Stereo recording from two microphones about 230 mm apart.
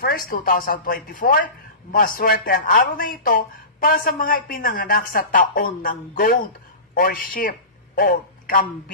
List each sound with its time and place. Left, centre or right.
0.0 s a woman's voice: left